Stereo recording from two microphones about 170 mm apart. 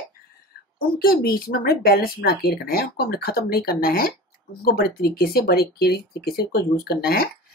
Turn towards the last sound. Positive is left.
turn(degrees=60)  # may be behind; listen again after turning